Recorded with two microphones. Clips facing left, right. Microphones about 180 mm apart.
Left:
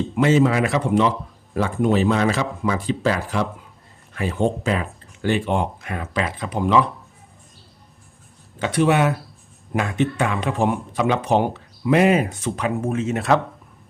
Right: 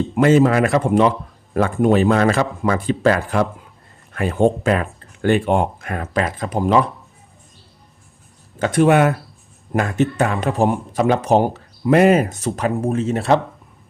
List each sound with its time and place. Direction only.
0.2 s speech: 50° right (ahead or behind)
8.5 s speech: 45° right (ahead or behind); by 13.4 s 30° right (ahead or behind)